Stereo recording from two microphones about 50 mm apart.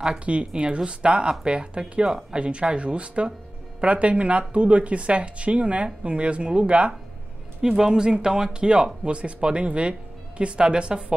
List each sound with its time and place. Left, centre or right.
0.2 s speech: right
7.6 s speech: centre